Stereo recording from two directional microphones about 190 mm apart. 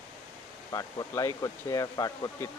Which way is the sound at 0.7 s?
20° left (ahead or behind).